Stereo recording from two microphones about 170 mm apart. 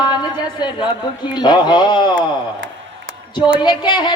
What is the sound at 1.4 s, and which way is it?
Speech, 25° left (ahead or behind).